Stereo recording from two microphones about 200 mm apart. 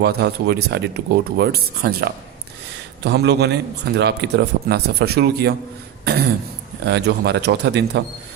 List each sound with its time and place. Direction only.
0.0 s a man's voice: 55° right (ahead or behind)
6.8 s a man's voice: 55° right (ahead or behind)